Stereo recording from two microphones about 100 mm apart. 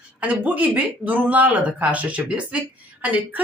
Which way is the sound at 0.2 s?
15° right (ahead or behind).